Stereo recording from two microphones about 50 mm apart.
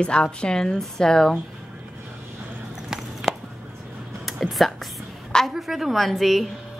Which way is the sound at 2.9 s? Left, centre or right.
Centre.